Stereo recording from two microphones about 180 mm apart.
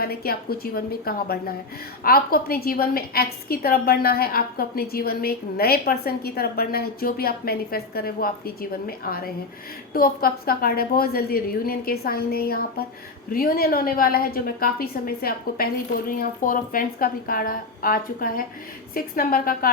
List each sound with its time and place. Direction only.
0.0 s a woman's voice: 55° left (ahead or behind)